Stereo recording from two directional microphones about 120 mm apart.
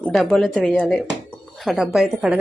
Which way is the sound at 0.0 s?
Centre (ahead or behind).